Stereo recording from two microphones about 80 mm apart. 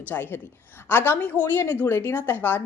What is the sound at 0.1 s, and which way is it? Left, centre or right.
A woman's voice, left.